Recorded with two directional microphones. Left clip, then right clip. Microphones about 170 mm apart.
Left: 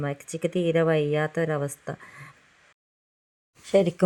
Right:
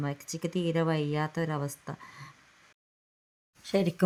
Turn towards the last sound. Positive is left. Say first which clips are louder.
# left 8 dB
turn(degrees=10)  # may be behind; listen again after turning